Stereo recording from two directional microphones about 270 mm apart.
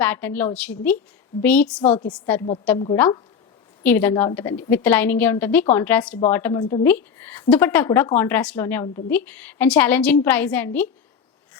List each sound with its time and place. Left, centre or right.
0.0 s a woman's voice: centre
2.7 s a woman's voice: centre
3.8 s a woman's voice: centre